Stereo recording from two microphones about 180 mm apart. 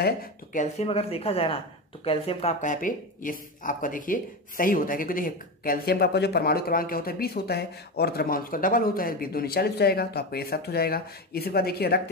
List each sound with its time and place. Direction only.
0.0 s speech: 50° left (ahead or behind)
0.8 s speech: 35° left (ahead or behind); by 12.0 s 60° left (ahead or behind)